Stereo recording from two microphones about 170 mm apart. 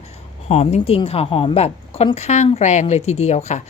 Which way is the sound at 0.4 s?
40° left (ahead or behind).